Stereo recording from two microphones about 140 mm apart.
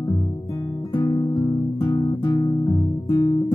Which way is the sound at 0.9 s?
30° left (ahead or behind).